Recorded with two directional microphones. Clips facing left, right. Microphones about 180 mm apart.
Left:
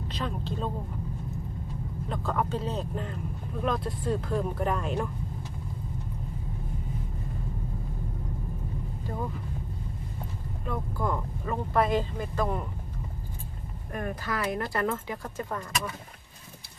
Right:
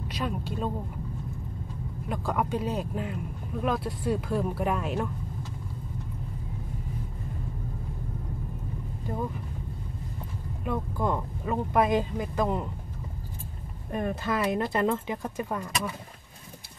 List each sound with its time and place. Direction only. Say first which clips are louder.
0.1 s speech: right 2 dB; 10° right (ahead or behind)
2.0 s speech: right 1 dB; 10° right (ahead or behind)
10.6 s speech: right 3 dB; 15° right (ahead or behind)
13.9 s speech: right 4 dB; 25° right (ahead or behind)